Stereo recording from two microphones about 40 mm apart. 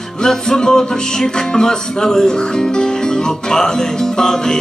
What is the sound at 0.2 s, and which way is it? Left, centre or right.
Music, centre.